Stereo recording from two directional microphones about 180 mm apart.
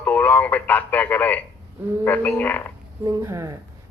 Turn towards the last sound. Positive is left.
turn(degrees=-15)  # may be behind; listen again after turning